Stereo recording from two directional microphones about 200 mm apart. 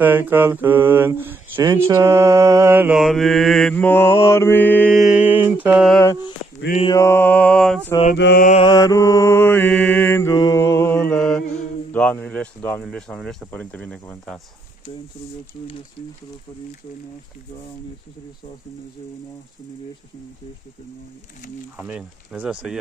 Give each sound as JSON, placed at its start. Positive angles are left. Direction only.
{"t": 0.0, "sound": "speech", "side_deg": -10}
{"t": 1.9, "sound": "mantra", "side_deg": -15}
{"t": 5.9, "sound": "speech", "side_deg": 10}
{"t": 6.8, "sound": "mantra", "side_deg": 15}
{"t": 8.1, "sound": "mantra", "side_deg": 50}
{"t": 8.6, "sound": "mantra", "side_deg": 20}
{"t": 21.7, "sound": "mantra", "side_deg": -5}